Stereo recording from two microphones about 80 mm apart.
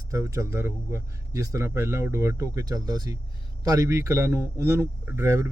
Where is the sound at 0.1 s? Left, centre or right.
Right.